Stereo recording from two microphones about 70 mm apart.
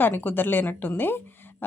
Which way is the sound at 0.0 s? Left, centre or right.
Left.